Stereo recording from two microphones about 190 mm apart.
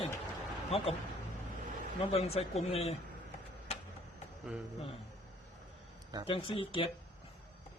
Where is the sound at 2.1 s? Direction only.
30° left (ahead or behind).